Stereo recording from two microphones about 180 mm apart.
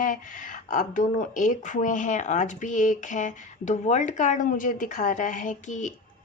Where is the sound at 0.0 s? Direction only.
50° left (ahead or behind).